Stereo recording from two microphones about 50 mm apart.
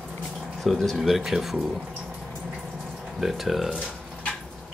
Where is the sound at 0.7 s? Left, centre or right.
Centre.